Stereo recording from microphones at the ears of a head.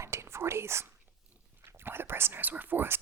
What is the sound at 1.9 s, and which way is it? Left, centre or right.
Whispering, right.